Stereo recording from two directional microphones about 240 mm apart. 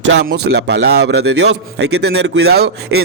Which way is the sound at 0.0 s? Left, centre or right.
Right.